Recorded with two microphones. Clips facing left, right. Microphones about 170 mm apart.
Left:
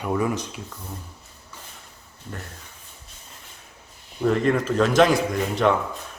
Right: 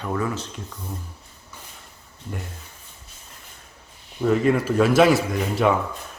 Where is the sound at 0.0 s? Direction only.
15° left (ahead or behind).